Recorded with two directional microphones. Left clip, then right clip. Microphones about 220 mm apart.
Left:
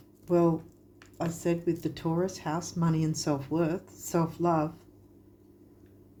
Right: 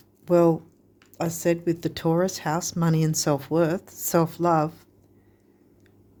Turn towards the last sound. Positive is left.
turn(degrees=-50)  # may be behind; listen again after turning